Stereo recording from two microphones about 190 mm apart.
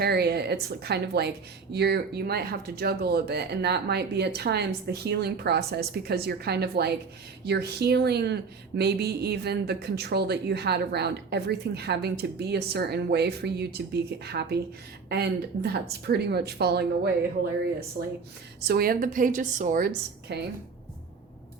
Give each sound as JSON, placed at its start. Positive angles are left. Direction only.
{"t": 0.0, "sound": "speech", "side_deg": -60}
{"t": 18.0, "sound": "a woman's voice", "side_deg": -40}
{"t": 18.6, "sound": "a woman's voice", "side_deg": -55}